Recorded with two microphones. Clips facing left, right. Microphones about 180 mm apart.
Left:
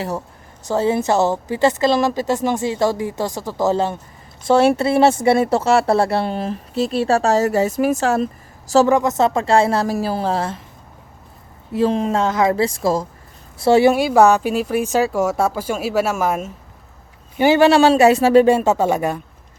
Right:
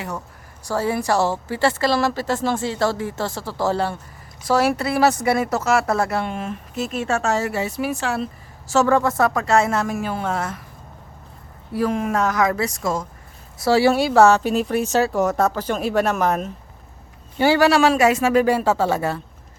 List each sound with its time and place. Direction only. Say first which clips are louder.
0.7 s speech: left 4 dB; 25° left (ahead or behind)
8.9 s speech: left 2 dB; 20° left (ahead or behind)
11.7 s speech: left 4 dB; 25° left (ahead or behind)
13.6 s speech: left 3 dB; 20° left (ahead or behind); by 16.5 s 5° left (ahead or behind)
17.3 s speech: left 3 dB; 20° left (ahead or behind)